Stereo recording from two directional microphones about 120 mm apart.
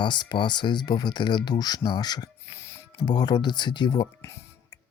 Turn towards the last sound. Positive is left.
turn(degrees=40)  # may be behind; listen again after turning